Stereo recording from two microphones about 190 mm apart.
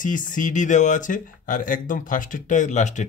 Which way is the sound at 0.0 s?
45° left (ahead or behind).